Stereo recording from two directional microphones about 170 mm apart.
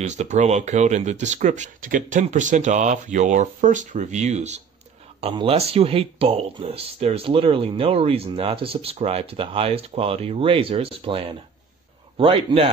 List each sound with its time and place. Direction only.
0.0 s speech: 45° right (ahead or behind)